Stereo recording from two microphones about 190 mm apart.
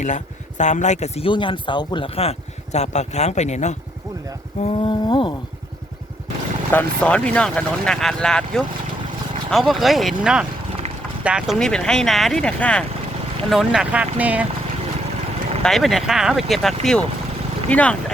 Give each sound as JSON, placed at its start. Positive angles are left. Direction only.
{"t": 0.0, "sound": "speech", "side_deg": 40}
{"t": 4.6, "sound": "a sound", "side_deg": 25}
{"t": 6.7, "sound": "speech", "side_deg": 5}
{"t": 15.6, "sound": "speech", "side_deg": 0}